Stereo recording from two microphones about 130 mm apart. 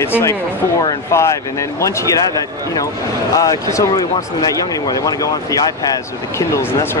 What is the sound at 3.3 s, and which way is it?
Speech, 25° left (ahead or behind).